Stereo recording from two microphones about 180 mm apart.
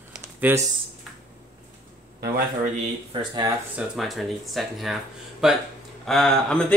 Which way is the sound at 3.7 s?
Centre (ahead or behind).